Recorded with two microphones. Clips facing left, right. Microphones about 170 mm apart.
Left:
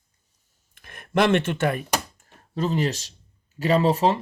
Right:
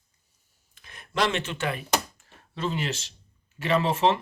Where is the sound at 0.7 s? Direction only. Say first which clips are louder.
Left 8 dB; 55° left (ahead or behind).